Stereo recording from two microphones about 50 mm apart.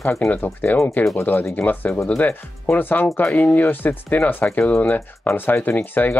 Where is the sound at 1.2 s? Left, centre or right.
Left.